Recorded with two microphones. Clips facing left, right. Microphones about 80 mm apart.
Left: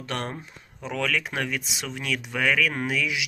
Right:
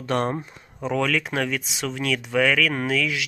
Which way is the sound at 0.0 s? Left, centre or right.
Right.